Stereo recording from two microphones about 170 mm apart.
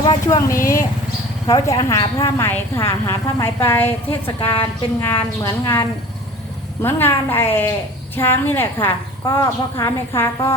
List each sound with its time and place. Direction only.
0.0 s a woman's voice: 25° left (ahead or behind)
6.8 s a woman's voice: 15° left (ahead or behind)